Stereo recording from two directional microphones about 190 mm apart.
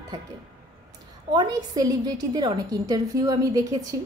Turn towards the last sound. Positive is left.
turn(degrees=-20)  # may be behind; listen again after turning